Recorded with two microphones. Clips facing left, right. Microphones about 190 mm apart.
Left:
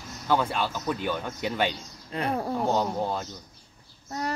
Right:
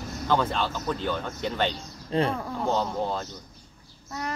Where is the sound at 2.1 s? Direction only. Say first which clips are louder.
Right 7 dB; 30° right (ahead or behind).